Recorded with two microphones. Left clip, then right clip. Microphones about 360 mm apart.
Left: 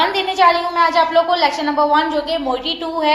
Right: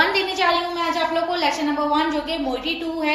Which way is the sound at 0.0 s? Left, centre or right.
Centre.